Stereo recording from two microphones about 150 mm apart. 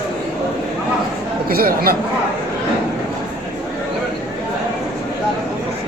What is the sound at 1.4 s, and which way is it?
Speech, 80° right.